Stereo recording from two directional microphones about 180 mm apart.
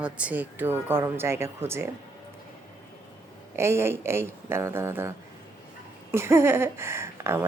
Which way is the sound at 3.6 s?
15° right (ahead or behind).